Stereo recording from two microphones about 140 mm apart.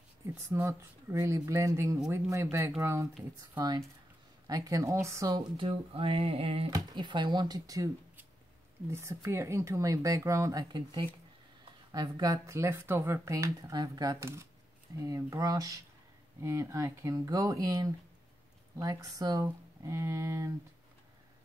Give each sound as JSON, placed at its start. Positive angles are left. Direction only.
{"t": 0.3, "sound": "speech", "side_deg": -15}
{"t": 5.3, "sound": "speech", "side_deg": -40}
{"t": 6.7, "sound": "speech", "side_deg": -35}
{"t": 8.9, "sound": "speech", "side_deg": -20}